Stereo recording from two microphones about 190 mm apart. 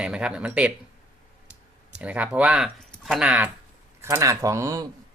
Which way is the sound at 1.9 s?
5° right (ahead or behind).